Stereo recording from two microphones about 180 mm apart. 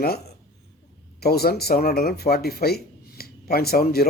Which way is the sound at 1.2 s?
60° left (ahead or behind).